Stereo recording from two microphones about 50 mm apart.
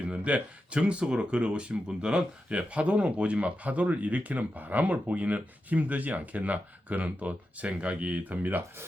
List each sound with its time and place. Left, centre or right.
0.0 s speech: right